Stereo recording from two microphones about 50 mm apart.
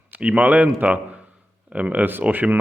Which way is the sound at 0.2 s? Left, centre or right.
Right.